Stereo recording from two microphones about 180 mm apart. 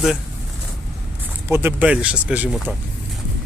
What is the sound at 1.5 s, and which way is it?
Speech, 15° right (ahead or behind).